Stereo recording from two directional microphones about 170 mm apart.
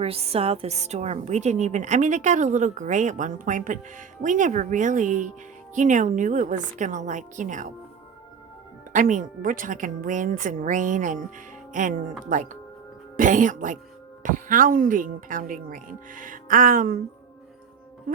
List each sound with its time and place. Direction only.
0.0 s a woman's voice: 35° right (ahead or behind)
8.9 s a woman's voice: 50° right (ahead or behind)